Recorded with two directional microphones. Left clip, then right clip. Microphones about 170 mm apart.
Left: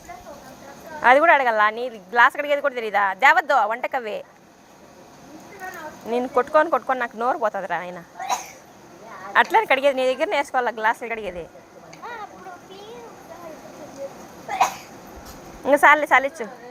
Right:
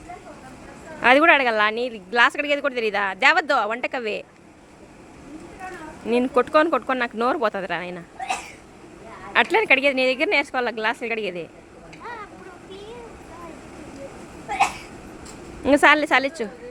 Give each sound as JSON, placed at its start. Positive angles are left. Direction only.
{"t": 1.0, "sound": "speech", "side_deg": -40}
{"t": 6.1, "sound": "speech", "side_deg": -40}
{"t": 9.3, "sound": "speech", "side_deg": -25}
{"t": 15.6, "sound": "speech", "side_deg": -40}